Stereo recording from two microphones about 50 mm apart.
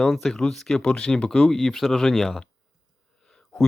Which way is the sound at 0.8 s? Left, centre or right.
Centre.